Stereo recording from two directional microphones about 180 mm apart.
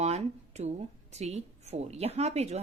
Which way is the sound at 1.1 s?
35° right (ahead or behind).